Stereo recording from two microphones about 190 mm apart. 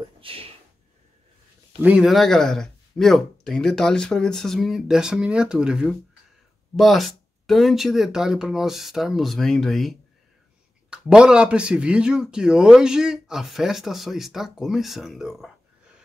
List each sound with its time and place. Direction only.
0.2 s speech: 30° right (ahead or behind)
1.8 s a man's voice: 5° right (ahead or behind)